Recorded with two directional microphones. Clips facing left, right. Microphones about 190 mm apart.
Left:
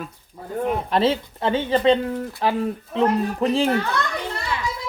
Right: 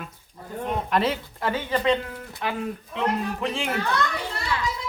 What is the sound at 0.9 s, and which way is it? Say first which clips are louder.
Speech: left 3 dB; 30° left (ahead or behind).